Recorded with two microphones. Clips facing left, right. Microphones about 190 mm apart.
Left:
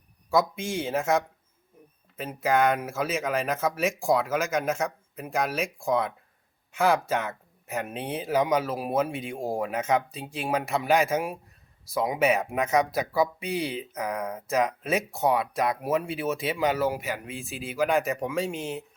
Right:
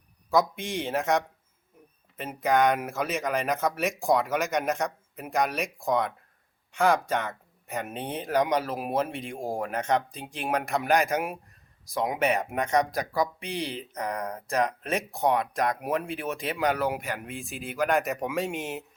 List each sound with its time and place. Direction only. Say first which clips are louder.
0.3 s speech: even; centre (ahead or behind)